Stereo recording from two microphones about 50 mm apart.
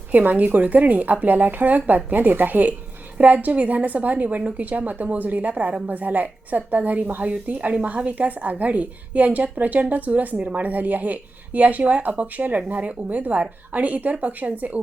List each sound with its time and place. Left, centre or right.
0.1 s a woman's voice: right